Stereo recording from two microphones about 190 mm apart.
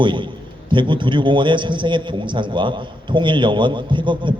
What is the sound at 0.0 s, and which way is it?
A man's voice, 25° right (ahead or behind).